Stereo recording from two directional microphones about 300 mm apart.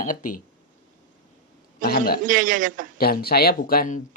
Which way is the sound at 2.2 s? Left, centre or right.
Right.